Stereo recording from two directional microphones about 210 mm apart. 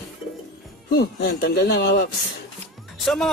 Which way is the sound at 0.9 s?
55° left (ahead or behind).